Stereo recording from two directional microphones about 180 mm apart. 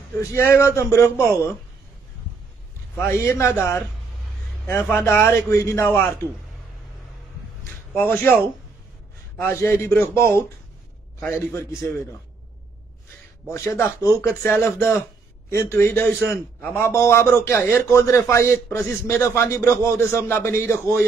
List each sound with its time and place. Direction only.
0.2 s a man's voice: 15° left (ahead or behind)
3.0 s a man's voice: 15° left (ahead or behind)
4.9 s a man's voice: 15° left (ahead or behind)
7.9 s a man's voice: 15° left (ahead or behind)
9.4 s a man's voice: 15° left (ahead or behind)
13.5 s a man's voice: 15° left (ahead or behind)